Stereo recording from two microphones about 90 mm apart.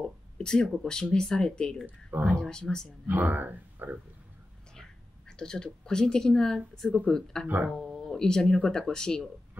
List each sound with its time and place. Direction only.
0.4 s speech: 10° left (ahead or behind)
1.9 s speech: 20° right (ahead or behind)
2.4 s speech: 5° left (ahead or behind)
3.1 s speech: 20° right (ahead or behind)
5.3 s speech: 10° left (ahead or behind)